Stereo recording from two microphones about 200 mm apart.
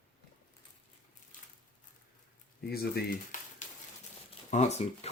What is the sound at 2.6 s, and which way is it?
Speech, 50° left (ahead or behind).